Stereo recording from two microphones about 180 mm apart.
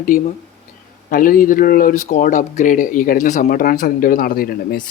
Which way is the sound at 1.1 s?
50° left (ahead or behind).